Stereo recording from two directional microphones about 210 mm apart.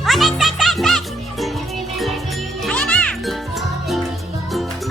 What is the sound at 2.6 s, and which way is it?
Music, 5° left (ahead or behind).